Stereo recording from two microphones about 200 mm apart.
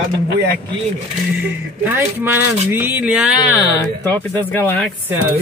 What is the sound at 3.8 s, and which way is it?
Speech, 10° left (ahead or behind).